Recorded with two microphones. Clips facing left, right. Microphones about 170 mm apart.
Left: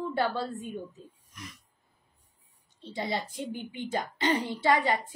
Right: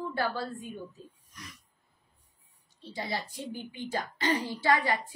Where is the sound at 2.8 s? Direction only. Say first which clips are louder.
Left 3 dB; 20° left (ahead or behind).